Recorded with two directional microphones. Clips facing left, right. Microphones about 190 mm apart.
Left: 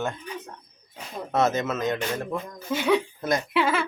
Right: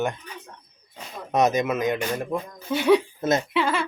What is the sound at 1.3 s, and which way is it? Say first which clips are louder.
Speech: right 3 dB; 15° right (ahead or behind).